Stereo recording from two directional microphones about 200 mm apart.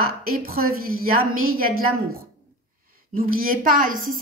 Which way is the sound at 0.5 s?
50° right (ahead or behind).